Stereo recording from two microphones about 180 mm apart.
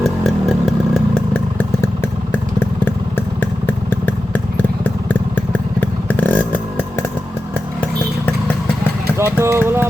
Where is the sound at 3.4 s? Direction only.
10° left (ahead or behind).